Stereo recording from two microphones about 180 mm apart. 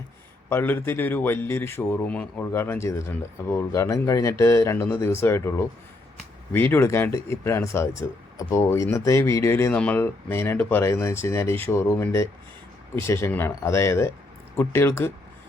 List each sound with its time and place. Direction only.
0.5 s speech: 10° left (ahead or behind)